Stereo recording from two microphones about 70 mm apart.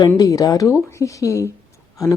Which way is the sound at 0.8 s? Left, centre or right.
Left.